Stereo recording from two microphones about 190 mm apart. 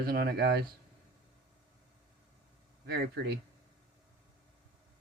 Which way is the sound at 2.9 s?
60° right (ahead or behind).